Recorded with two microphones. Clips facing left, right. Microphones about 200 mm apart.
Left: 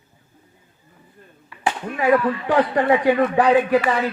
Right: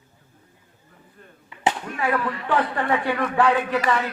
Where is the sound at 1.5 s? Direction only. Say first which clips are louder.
Even; 25° right (ahead or behind).